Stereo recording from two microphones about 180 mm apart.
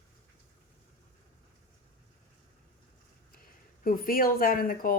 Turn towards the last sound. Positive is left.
turn(degrees=50)  # may be behind; listen again after turning